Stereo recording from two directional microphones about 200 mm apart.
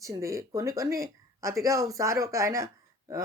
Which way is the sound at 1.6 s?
15° right (ahead or behind).